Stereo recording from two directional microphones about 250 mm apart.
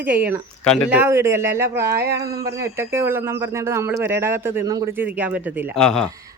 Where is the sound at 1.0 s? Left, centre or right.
Centre.